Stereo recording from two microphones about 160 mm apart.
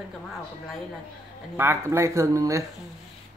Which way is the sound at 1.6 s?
15° right (ahead or behind).